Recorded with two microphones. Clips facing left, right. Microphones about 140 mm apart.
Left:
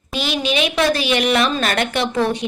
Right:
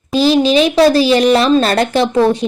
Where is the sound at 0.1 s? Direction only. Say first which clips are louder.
Right 11 dB; 35° right (ahead or behind).